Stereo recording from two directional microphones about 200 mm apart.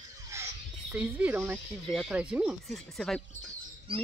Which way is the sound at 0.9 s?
10° right (ahead or behind).